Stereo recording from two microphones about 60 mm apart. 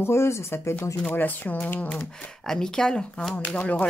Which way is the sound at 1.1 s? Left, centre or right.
Left.